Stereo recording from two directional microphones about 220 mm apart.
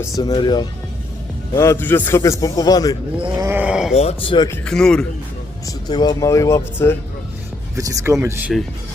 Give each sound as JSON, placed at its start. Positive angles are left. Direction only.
{"t": 0.2, "sound": "a man's voice", "side_deg": 20}
{"t": 3.2, "sound": "groan", "side_deg": -10}
{"t": 3.9, "sound": "a man's voice", "side_deg": 25}
{"t": 5.6, "sound": "a man's voice", "side_deg": 20}
{"t": 7.8, "sound": "speech", "side_deg": -15}